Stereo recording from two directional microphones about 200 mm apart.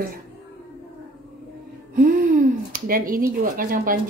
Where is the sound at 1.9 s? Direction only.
45° right (ahead or behind).